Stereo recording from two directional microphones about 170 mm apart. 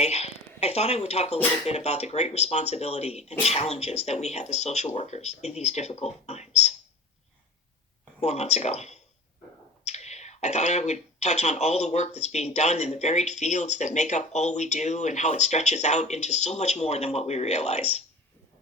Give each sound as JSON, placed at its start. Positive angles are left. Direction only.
{"t": 0.0, "sound": "a sound", "side_deg": 40}
{"t": 1.6, "sound": "speech", "side_deg": 40}
{"t": 8.2, "sound": "speech", "side_deg": 40}